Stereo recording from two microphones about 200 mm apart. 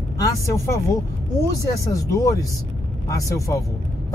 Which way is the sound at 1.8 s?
15° left (ahead or behind).